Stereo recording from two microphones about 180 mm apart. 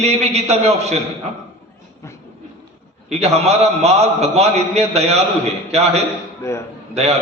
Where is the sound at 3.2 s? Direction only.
35° right (ahead or behind).